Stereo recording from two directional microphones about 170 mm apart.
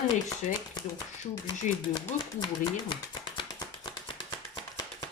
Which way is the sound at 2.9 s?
25° left (ahead or behind).